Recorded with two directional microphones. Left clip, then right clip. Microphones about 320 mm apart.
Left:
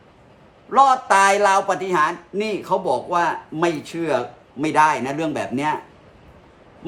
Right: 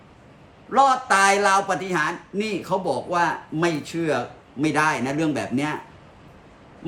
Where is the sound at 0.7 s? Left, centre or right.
Centre.